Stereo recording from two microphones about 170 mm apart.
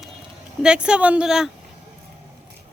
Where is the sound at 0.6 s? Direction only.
5° right (ahead or behind).